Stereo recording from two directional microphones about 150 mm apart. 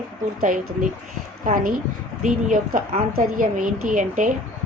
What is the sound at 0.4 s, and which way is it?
A woman's voice, 60° right (ahead or behind).